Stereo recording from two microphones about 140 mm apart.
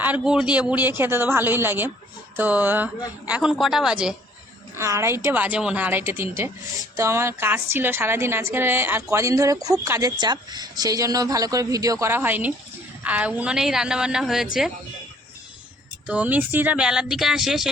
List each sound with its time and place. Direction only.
0.0 s a woman's voice: 10° right (ahead or behind)
4.8 s a woman's voice: 20° right (ahead or behind); by 14.4 s 5° right (ahead or behind)
16.0 s speech: 10° right (ahead or behind)